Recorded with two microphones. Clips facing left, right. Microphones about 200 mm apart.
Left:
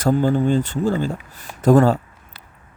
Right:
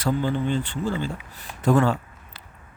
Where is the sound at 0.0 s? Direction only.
45° left (ahead or behind).